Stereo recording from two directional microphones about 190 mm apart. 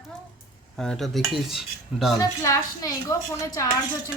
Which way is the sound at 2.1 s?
15° left (ahead or behind).